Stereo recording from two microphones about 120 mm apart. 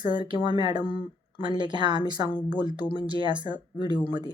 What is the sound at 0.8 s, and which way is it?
Speech, 45° left (ahead or behind).